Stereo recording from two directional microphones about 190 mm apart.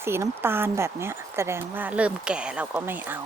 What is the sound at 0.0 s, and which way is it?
Speech, 15° right (ahead or behind).